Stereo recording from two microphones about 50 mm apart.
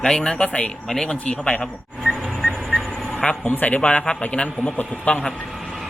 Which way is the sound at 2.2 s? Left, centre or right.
Centre.